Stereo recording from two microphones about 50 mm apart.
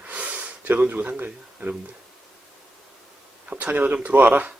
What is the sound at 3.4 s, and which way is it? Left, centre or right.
Speech, right.